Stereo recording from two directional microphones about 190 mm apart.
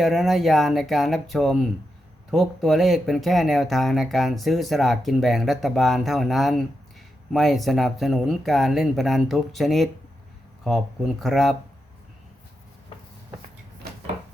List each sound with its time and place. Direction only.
0.0 s speech: centre (ahead or behind)